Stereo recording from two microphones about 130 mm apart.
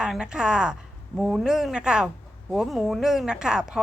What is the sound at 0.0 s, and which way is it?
Speech, 5° right (ahead or behind).